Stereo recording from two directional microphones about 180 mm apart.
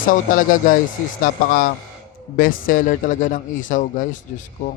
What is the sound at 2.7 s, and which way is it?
Speech, 50° left (ahead or behind).